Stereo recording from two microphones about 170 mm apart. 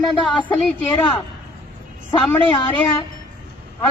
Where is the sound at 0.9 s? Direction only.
30° left (ahead or behind).